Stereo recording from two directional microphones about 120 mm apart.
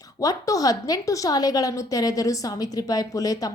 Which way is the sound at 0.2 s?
30° left (ahead or behind).